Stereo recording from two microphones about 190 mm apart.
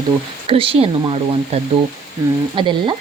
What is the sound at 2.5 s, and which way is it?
Speech, 25° right (ahead or behind).